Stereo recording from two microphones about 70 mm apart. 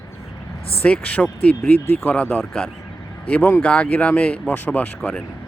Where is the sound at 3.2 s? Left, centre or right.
Centre.